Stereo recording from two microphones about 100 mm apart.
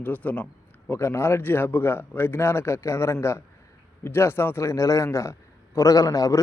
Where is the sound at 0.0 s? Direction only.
15° left (ahead or behind).